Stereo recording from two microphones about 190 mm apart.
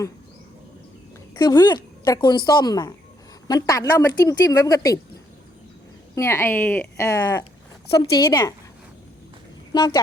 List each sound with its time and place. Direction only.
1.4 s a woman's voice: 20° left (ahead or behind)
6.1 s a woman's voice: 15° left (ahead or behind)
9.7 s a woman's voice: 20° left (ahead or behind)